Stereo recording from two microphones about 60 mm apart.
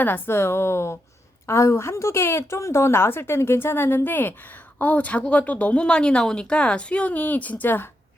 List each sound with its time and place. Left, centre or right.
0.0 s a woman's voice: left